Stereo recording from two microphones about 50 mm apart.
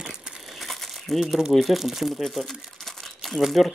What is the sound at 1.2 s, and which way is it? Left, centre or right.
Speech, centre.